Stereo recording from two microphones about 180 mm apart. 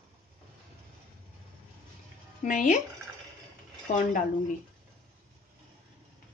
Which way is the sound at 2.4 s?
45° left (ahead or behind).